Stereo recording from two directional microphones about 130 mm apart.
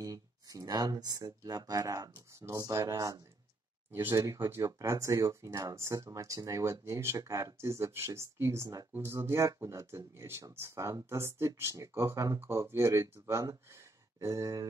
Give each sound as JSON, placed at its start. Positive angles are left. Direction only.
{"t": 0.0, "sound": "speech", "side_deg": -25}